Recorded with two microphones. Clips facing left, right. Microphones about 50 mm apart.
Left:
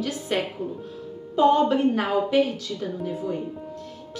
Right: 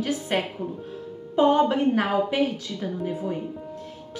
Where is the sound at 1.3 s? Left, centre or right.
Centre.